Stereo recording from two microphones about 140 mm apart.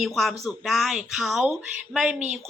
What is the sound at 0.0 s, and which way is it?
Speech, centre (ahead or behind).